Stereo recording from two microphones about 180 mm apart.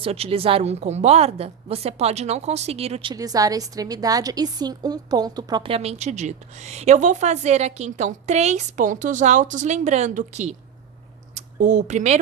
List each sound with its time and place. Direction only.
0.0 s a woman's voice: 35° right (ahead or behind)